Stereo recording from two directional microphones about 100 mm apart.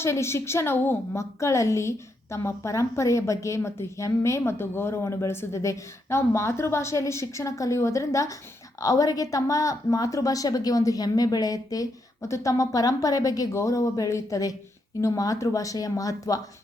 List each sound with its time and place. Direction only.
0.0 s a woman's voice: 25° left (ahead or behind)